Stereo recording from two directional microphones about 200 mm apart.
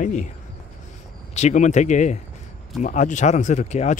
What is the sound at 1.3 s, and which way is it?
Speech, 35° left (ahead or behind).